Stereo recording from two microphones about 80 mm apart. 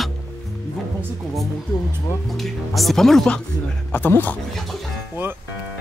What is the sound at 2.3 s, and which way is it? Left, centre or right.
Speech, centre.